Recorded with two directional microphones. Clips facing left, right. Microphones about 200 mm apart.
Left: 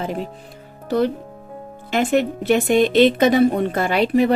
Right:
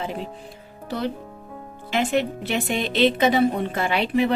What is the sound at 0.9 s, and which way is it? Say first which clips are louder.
A woman's voice: left 8 dB; 45° left (ahead or behind).